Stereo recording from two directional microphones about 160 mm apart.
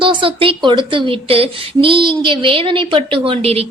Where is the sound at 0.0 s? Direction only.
30° right (ahead or behind).